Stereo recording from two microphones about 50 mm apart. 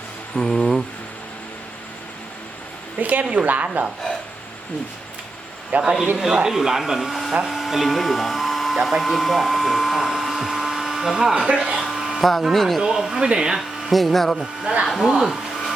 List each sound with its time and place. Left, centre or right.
0.3 s a sound: centre
3.0 s speech: right
5.7 s speech: right
6.5 s speech: centre
9.0 s hair dryer: centre
11.4 s electric shaver: centre
12.2 s speech: centre
12.8 s speech: centre
13.6 s speech: centre
14.6 s speech: centre
14.9 s speech: centre